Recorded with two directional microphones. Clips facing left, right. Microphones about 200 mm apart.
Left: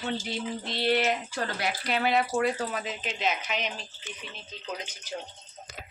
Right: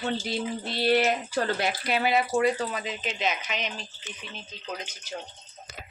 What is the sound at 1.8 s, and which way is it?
Speech, 10° right (ahead or behind).